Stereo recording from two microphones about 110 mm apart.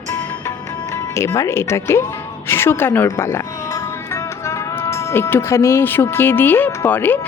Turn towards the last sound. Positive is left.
turn(degrees=20)  # may be behind; listen again after turning